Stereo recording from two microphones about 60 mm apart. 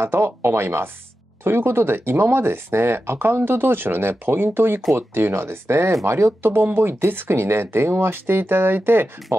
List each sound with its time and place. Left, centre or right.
0.0 s speech: right